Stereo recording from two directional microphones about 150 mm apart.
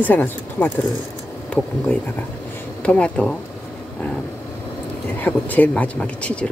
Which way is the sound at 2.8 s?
10° left (ahead or behind).